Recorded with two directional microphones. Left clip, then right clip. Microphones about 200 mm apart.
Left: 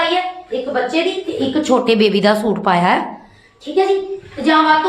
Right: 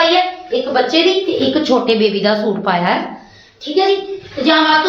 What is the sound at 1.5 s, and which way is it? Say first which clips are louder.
Speech: left 1 dB; 40° left (ahead or behind).